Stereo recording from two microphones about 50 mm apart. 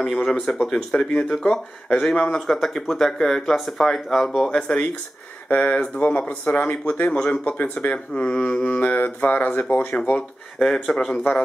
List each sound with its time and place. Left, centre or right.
0.0 s speech: centre
4.5 s speech: centre
10.6 s speech: centre